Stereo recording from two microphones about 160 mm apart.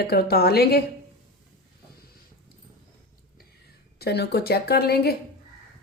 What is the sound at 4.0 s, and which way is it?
Speech, 90° left.